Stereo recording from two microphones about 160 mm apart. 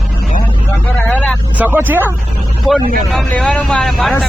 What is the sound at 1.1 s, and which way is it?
Vehicle, 10° left (ahead or behind).